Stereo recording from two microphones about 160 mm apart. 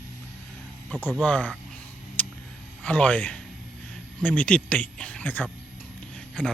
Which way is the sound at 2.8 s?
10° left (ahead or behind).